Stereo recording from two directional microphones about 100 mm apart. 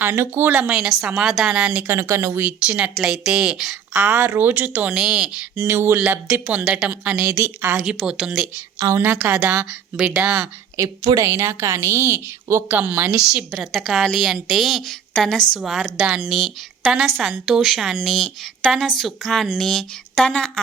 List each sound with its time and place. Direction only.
0.0 s speech: 20° right (ahead or behind)
1.9 s a woman's voice: 30° right (ahead or behind)
2.6 s speech: 10° right (ahead or behind)
5.5 s a woman's voice: 25° right (ahead or behind)
6.5 s speech: 15° right (ahead or behind)
7.3 s a woman's voice: 25° right (ahead or behind)
7.9 s speech: 10° right (ahead or behind)
9.0 s a woman's voice: 20° right (ahead or behind)
10.2 s speech: 15° right (ahead or behind)
10.8 s a woman's voice: 40° right (ahead or behind); by 13.1 s 20° right (ahead or behind)
13.1 s a woman's voice: 5° right (ahead or behind); by 20.5 s 10° left (ahead or behind)